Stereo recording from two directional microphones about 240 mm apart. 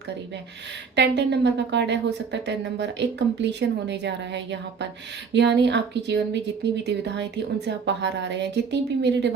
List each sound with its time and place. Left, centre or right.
0.9 s speech: right